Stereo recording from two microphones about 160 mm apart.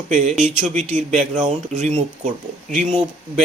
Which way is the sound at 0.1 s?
50° right (ahead or behind).